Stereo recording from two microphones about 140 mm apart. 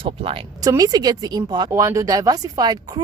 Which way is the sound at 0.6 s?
25° right (ahead or behind).